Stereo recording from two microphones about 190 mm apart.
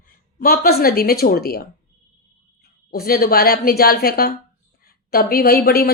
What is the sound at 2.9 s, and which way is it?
A woman's voice, 50° left (ahead or behind).